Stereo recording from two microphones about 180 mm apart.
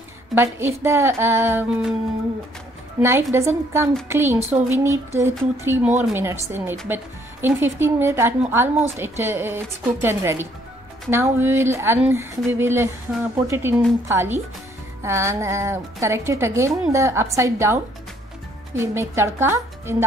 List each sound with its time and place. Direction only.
0.3 s a woman's voice: 15° right (ahead or behind)
3.0 s a woman's voice: 15° right (ahead or behind)
4.4 s speech: 35° right (ahead or behind)
4.6 s a woman's voice: 15° right (ahead or behind)
18.8 s a woman's voice: 15° right (ahead or behind)